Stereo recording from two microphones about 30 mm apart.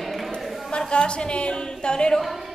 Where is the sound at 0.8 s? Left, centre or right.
Left.